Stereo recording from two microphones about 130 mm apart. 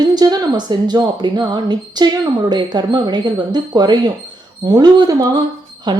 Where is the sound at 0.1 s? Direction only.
30° right (ahead or behind).